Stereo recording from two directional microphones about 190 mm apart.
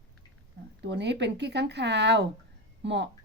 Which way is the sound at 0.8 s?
65° right (ahead or behind).